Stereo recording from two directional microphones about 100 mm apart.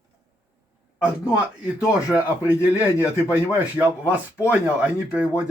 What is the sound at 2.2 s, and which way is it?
Speech, 20° right (ahead or behind).